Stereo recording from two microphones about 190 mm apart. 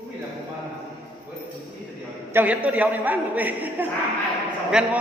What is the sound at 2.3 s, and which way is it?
A man's voice, 10° right (ahead or behind).